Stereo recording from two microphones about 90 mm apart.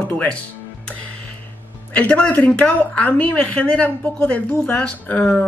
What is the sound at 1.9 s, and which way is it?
Speech, 15° left (ahead or behind).